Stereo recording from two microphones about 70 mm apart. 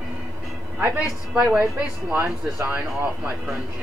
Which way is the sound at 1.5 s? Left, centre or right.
Right.